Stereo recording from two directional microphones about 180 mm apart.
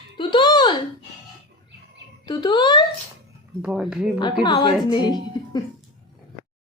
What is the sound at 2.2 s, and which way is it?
Speech, 25° left (ahead or behind).